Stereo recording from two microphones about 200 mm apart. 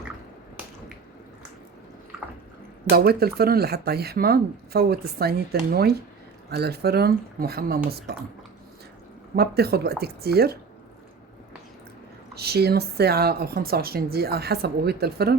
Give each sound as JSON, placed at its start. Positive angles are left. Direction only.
{"t": 2.9, "sound": "speech", "side_deg": -50}
{"t": 9.3, "sound": "speech", "side_deg": -50}
{"t": 12.3, "sound": "speech", "side_deg": -55}